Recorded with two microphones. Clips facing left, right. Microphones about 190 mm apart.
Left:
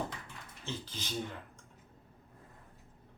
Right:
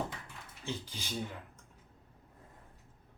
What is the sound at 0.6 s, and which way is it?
Speech, 10° right (ahead or behind).